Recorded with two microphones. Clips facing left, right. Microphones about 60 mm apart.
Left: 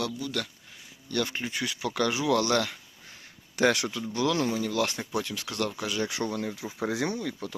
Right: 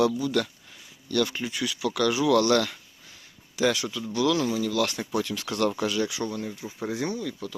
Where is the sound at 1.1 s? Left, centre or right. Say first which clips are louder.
Right 4 dB; centre.